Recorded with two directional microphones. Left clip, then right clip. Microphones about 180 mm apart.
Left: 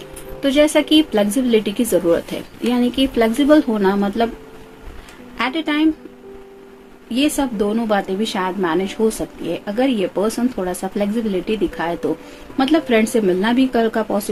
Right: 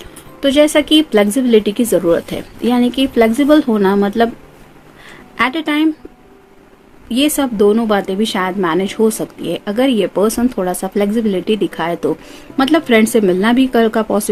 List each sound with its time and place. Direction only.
0.0 s speech: 40° right (ahead or behind)
5.4 s speech: 45° right (ahead or behind)
7.1 s speech: 50° right (ahead or behind)